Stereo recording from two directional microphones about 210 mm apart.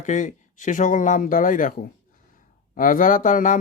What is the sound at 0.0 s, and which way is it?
Speech, 35° left (ahead or behind).